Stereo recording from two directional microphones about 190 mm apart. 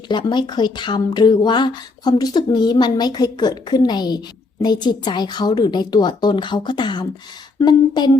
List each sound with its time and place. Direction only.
0.1 s speech: 25° left (ahead or behind)